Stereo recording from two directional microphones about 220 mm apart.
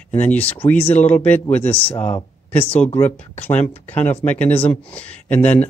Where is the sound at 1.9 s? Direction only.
25° left (ahead or behind).